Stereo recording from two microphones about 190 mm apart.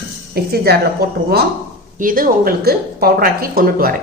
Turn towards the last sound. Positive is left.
turn(degrees=-50)  # may be behind; listen again after turning